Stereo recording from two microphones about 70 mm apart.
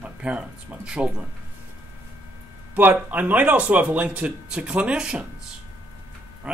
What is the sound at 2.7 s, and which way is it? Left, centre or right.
A man's voice, right.